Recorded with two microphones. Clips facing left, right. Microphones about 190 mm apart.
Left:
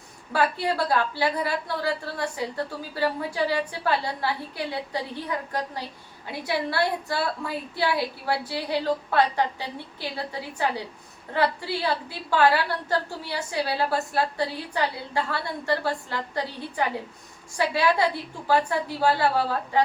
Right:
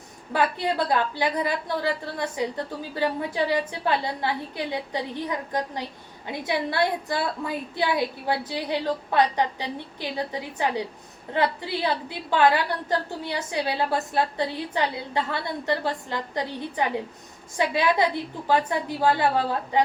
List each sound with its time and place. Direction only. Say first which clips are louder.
0.3 s a woman's voice: even; 20° right (ahead or behind)